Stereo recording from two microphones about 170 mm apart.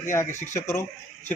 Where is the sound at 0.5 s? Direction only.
15° left (ahead or behind).